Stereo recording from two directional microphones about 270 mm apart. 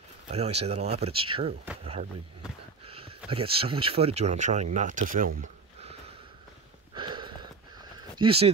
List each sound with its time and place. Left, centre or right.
0.3 s speech: right
2.8 s a sound: right
3.3 s speech: centre
5.4 s a sound: right
6.9 s sniff: centre
8.2 s speech: right